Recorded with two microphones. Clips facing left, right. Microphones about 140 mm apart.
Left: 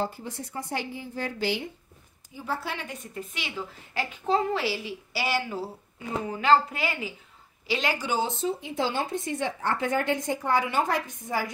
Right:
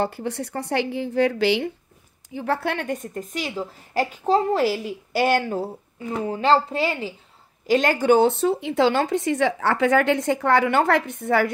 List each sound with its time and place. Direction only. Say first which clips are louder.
0.0 s speech: right 6 dB; 70° right (ahead or behind); by 1.7 s 85° right
2.3 s a woman's voice: right 8 dB; 65° right (ahead or behind); by 5.7 s 50° right (ahead or behind)
6.2 s a woman's voice: right 3 dB; 30° right (ahead or behind)
7.6 s speech: right 10 dB; 50° right (ahead or behind); by 11.5 s 65° right (ahead or behind)